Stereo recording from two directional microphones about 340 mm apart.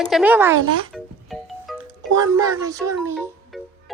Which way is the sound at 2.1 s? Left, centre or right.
Centre.